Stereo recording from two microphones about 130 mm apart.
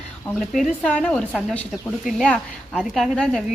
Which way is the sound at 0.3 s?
Centre (ahead or behind).